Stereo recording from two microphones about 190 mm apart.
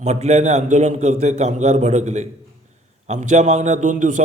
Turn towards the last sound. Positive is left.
turn(degrees=-40)  # may be behind; listen again after turning